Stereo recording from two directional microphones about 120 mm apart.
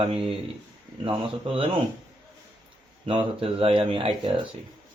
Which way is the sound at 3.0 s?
50° right (ahead or behind).